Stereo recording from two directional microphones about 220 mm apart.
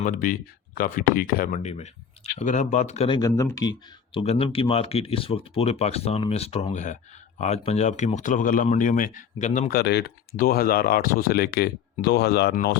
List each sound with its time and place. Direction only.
0.0 s speech: 35° left (ahead or behind)